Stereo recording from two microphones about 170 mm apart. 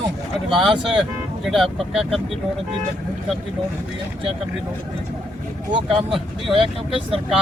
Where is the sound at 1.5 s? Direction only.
Centre (ahead or behind).